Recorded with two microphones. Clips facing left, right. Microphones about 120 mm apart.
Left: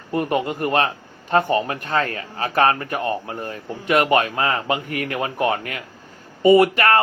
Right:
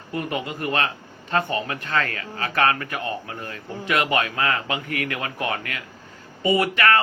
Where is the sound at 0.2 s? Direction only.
50° left (ahead or behind).